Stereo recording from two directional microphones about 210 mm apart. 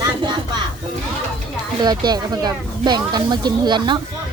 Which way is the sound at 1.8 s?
20° right (ahead or behind).